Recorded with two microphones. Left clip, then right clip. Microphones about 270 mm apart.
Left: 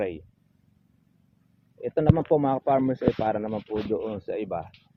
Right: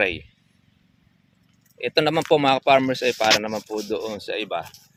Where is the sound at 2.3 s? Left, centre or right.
Centre.